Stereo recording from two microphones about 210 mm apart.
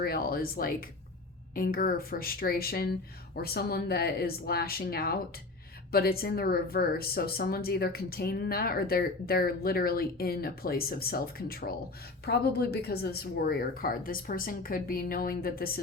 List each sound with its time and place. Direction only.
0.0 s a woman's voice: 45° left (ahead or behind)